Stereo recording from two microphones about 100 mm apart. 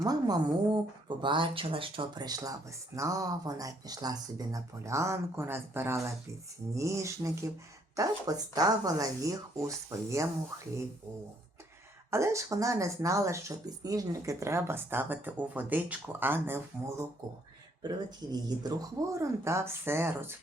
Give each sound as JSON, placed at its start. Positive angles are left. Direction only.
{"t": 0.0, "sound": "speech", "side_deg": -40}
{"t": 2.1, "sound": "speech", "side_deg": -40}
{"t": 12.1, "sound": "speech", "side_deg": -30}
{"t": 17.8, "sound": "speech", "side_deg": -40}